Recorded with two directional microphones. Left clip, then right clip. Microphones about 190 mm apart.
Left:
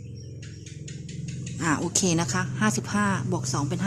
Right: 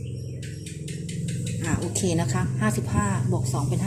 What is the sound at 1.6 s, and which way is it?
A woman's voice, 45° left (ahead or behind).